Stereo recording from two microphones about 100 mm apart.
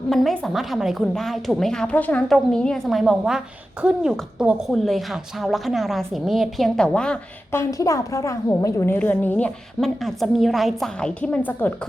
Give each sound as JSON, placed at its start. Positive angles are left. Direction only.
{"t": 0.1, "sound": "a woman's voice", "side_deg": 0}
{"t": 7.5, "sound": "a woman's voice", "side_deg": 30}
{"t": 9.8, "sound": "a woman's voice", "side_deg": 0}
{"t": 11.2, "sound": "a woman's voice", "side_deg": 15}